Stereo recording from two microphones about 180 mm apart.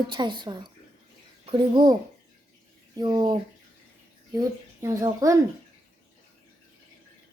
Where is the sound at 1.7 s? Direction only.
25° right (ahead or behind).